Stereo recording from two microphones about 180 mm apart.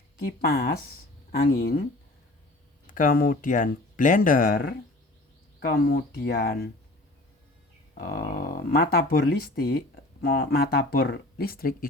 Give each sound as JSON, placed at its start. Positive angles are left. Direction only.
{"t": 0.3, "sound": "speech", "side_deg": 60}
{"t": 2.8, "sound": "speech", "side_deg": 50}
{"t": 5.5, "sound": "speech", "side_deg": 65}
{"t": 7.9, "sound": "speech", "side_deg": 50}